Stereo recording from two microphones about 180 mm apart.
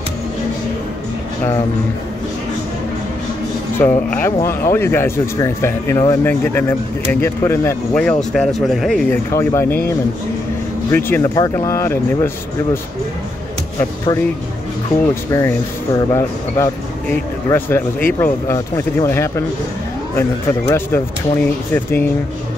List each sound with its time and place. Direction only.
3.8 s speech: 15° left (ahead or behind)
9.1 s speech: 15° left (ahead or behind)
10.9 s speech: 10° left (ahead or behind)
13.7 s speech: 20° left (ahead or behind)
15.3 s speech: 20° left (ahead or behind)